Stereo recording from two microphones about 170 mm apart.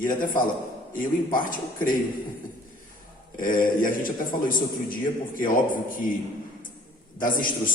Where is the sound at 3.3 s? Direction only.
55° left (ahead or behind).